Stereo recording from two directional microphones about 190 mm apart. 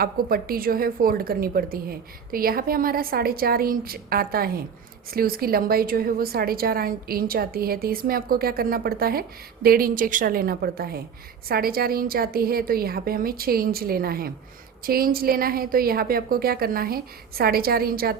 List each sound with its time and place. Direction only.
0.0 s a woman's voice: 50° right (ahead or behind)